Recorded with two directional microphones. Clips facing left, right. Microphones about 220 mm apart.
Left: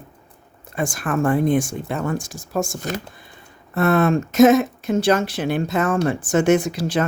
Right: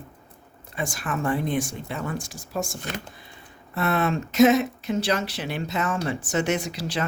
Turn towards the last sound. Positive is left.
turn(degrees=50)  # may be behind; listen again after turning